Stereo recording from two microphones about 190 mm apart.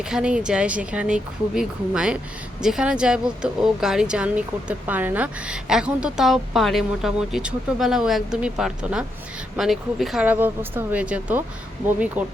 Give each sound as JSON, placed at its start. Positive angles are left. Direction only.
{"t": 0.0, "sound": "speech", "side_deg": -5}